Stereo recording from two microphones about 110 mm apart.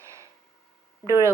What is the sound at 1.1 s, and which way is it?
Speech, 25° right (ahead or behind).